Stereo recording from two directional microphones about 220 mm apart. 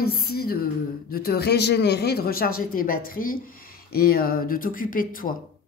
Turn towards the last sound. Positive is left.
turn(degrees=40)  # may be behind; listen again after turning